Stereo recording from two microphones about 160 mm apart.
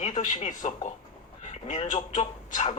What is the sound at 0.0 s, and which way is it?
Speech, 50° left (ahead or behind).